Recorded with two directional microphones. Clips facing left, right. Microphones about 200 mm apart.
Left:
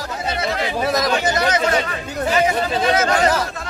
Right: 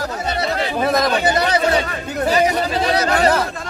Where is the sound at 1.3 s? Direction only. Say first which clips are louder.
Right 1 dB; 30° right (ahead or behind).